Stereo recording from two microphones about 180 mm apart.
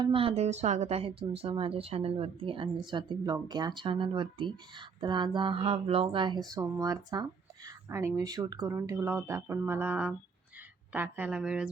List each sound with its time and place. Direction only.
0.0 s a woman's voice: 30° right (ahead or behind); by 11.7 s 5° right (ahead or behind)